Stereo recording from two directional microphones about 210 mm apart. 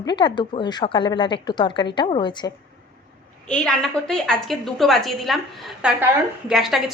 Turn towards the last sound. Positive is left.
turn(degrees=0)  # may be behind; listen again after turning